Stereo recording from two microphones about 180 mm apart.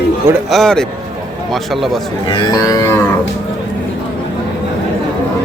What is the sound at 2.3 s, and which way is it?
Moo, 25° left (ahead or behind).